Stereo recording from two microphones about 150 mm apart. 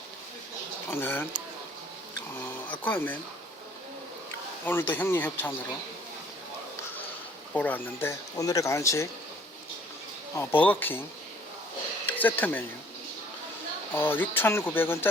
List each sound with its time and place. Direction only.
0.9 s speech: 15° left (ahead or behind)
2.3 s a sound: 15° left (ahead or behind)
2.8 s speech: 10° left (ahead or behind)
4.6 s speech: 15° left (ahead or behind)
7.5 s speech: 10° left (ahead or behind)
8.4 s speech: 20° left (ahead or behind)
10.3 s speech: 15° left (ahead or behind)
12.2 s speech: 10° left (ahead or behind)
13.9 s speech: 15° left (ahead or behind)